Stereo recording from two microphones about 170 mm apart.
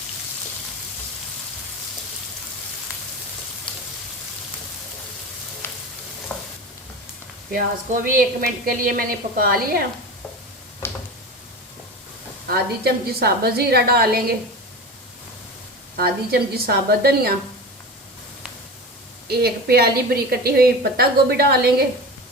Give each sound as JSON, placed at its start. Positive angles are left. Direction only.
{"t": 6.3, "sound": "stir", "side_deg": 10}
{"t": 7.5, "sound": "a woman's voice", "side_deg": -55}
{"t": 10.8, "sound": "a sound", "side_deg": 15}
{"t": 12.5, "sound": "a woman's voice", "side_deg": -65}
{"t": 16.0, "sound": "a woman's voice", "side_deg": -65}
{"t": 19.3, "sound": "a woman's voice", "side_deg": -70}